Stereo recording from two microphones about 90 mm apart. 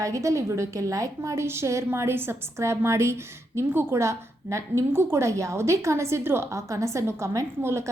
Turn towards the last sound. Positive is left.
turn(degrees=-30)  # may be behind; listen again after turning